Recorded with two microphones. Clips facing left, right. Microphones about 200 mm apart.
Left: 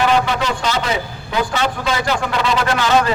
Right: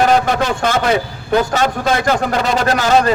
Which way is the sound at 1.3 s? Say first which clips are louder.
Right 5 dB; 45° right (ahead or behind).